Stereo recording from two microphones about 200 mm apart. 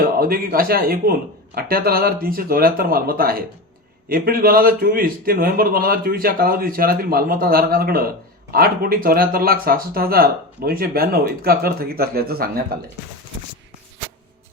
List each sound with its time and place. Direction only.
0.0 s a man's voice: 45° right (ahead or behind)